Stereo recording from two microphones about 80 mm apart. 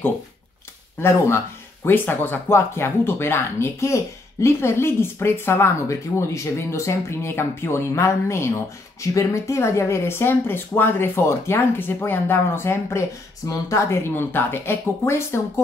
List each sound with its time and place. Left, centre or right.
1.9 s speech: left
13.5 s speech: left